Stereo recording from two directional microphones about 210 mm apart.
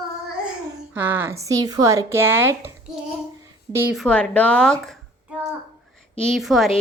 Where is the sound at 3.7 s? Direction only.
10° right (ahead or behind).